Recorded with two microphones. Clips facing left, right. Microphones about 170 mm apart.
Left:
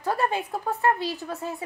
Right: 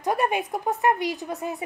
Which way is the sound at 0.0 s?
15° right (ahead or behind).